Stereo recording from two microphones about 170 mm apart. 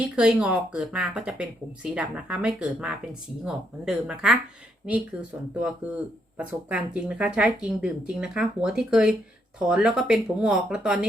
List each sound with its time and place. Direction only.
0.0 s speech: 5° right (ahead or behind)